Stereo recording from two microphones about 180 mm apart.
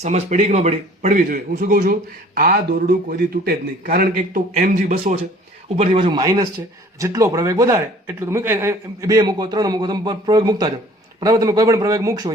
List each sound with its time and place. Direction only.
0.0 s a man's voice: 40° right (ahead or behind)
6.1 s a man's voice: 25° right (ahead or behind)